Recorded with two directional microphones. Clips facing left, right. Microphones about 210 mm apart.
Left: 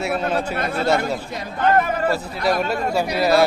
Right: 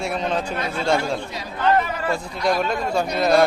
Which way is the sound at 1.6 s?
50° left (ahead or behind).